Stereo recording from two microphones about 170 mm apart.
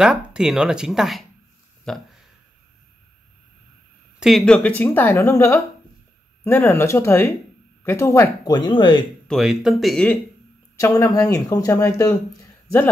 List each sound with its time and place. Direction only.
0.0 s speech: 5° right (ahead or behind)
4.2 s a woman's voice: centre (ahead or behind); by 9.0 s 25° left (ahead or behind)
9.3 s speech: centre (ahead or behind)
10.8 s speech: 20° left (ahead or behind)